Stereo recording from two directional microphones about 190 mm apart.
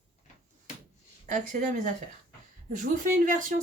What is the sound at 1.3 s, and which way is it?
Speech, 40° right (ahead or behind).